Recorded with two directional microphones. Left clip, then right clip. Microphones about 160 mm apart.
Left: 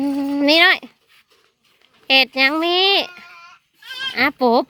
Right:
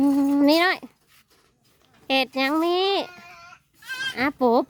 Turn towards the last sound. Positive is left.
turn(degrees=-10)  # may be behind; listen again after turning